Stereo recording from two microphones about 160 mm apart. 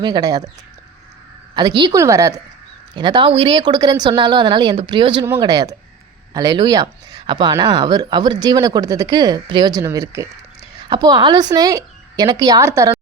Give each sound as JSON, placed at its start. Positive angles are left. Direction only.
{"t": 0.0, "sound": "a woman's voice", "side_deg": -25}
{"t": 1.5, "sound": "a woman's voice", "side_deg": -25}